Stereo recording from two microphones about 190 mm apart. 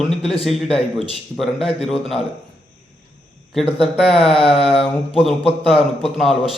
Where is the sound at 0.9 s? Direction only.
Centre (ahead or behind).